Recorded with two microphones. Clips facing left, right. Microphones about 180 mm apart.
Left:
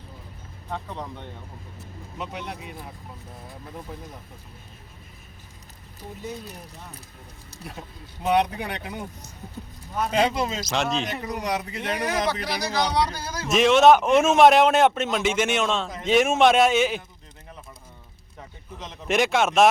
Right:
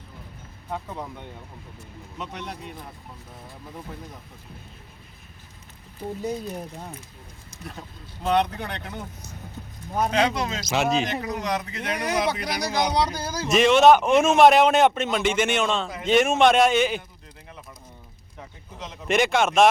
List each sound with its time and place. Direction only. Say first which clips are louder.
0.7 s speech: right 1 dB; 5° right (ahead or behind)
2.1 s a man's voice: left 1 dB; 5° left (ahead or behind)
8.2 s speech: left 1 dB; 10° left (ahead or behind)
10.1 s a man's voice: left 3 dB; 5° left (ahead or behind)
11.3 s a man's voice: even; 10° left (ahead or behind)
12.7 s speech: right 1 dB; 20° right (ahead or behind)
13.5 s a man's voice: even; centre (ahead or behind)
18.8 s a man's voice: right 1 dB; centre (ahead or behind)